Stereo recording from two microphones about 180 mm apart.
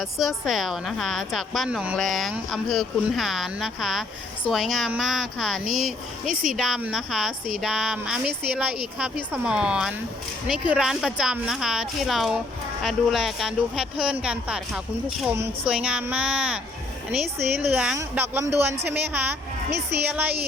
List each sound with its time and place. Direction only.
0.0 s a woman's voice: centre (ahead or behind)
6.2 s speech: 50° right (ahead or behind)
6.6 s a woman's voice: centre (ahead or behind)
17.6 s a woman's voice: 5° right (ahead or behind)